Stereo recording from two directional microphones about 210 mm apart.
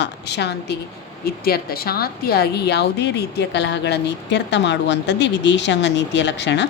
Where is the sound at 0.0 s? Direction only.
55° left (ahead or behind).